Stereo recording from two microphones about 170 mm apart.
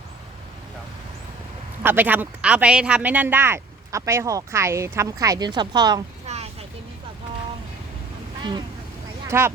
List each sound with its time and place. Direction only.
1.8 s a man's voice: 10° right (ahead or behind)
6.2 s a sound: 40° right (ahead or behind)
9.2 s speech: 15° right (ahead or behind)